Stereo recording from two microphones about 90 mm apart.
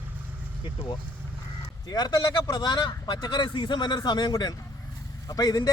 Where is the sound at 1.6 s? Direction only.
50° left (ahead or behind).